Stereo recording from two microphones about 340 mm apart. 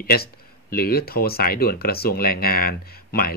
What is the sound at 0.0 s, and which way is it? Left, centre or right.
Speech, left.